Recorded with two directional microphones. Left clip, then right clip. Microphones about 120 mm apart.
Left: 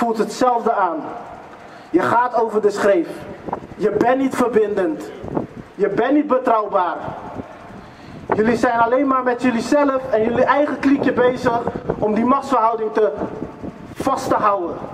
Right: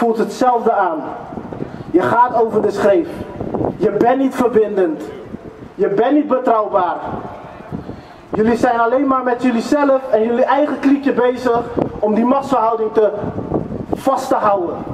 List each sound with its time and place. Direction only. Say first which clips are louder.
0.0 s a woman's voice: right 3 dB; 30° left (ahead or behind)
2.0 s a woman's voice: right 3 dB; 30° left (ahead or behind)
8.4 s a woman's voice: right 3 dB; 30° left (ahead or behind)